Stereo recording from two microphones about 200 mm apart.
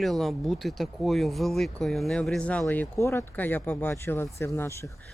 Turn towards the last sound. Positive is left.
turn(degrees=15)  # may be behind; listen again after turning